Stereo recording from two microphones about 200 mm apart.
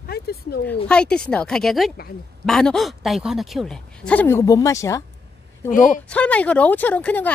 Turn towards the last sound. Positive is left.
turn(degrees=10)  # may be behind; listen again after turning